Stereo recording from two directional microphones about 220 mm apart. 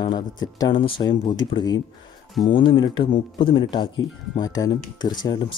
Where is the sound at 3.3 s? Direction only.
20° left (ahead or behind).